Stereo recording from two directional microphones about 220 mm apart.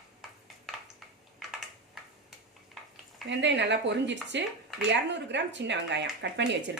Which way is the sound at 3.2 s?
55° right (ahead or behind).